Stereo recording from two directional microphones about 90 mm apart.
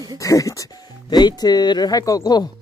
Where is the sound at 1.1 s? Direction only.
50° left (ahead or behind).